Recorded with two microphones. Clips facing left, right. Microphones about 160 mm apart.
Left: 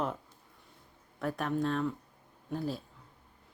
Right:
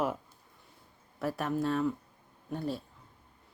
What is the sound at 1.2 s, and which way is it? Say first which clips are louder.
Speech: right 1 dB; centre (ahead or behind).